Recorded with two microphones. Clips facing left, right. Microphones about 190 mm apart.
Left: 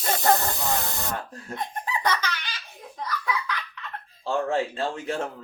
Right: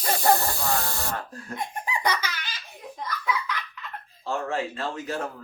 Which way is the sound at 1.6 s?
10° right (ahead or behind).